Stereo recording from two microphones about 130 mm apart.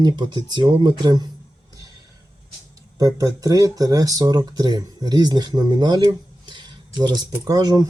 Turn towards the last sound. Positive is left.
turn(degrees=-30)  # may be behind; listen again after turning